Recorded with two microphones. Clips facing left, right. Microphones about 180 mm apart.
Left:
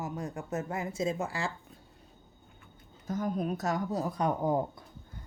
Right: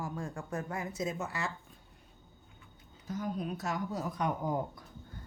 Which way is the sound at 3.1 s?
50° left (ahead or behind).